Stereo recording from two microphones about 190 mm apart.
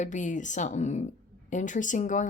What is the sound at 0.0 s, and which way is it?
Speech, 40° left (ahead or behind).